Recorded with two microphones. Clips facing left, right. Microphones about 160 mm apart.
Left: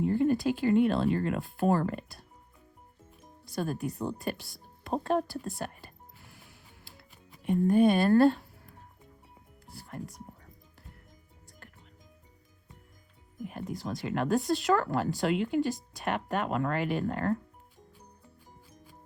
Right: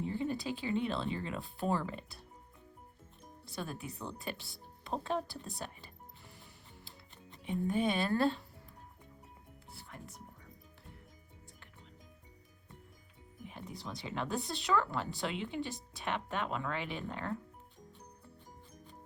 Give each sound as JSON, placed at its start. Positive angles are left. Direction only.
{"t": 0.0, "sound": "speech", "side_deg": 55}
{"t": 3.5, "sound": "speech", "side_deg": 45}
{"t": 7.7, "sound": "speech", "side_deg": 45}
{"t": 7.9, "sound": "speech", "side_deg": 60}
{"t": 9.7, "sound": "music", "side_deg": 40}
{"t": 13.5, "sound": "speech", "side_deg": 50}